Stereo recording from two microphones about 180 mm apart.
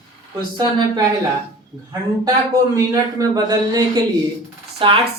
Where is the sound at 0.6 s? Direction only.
25° right (ahead or behind).